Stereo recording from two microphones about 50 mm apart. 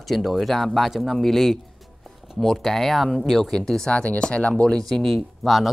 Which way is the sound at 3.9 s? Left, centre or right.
Left.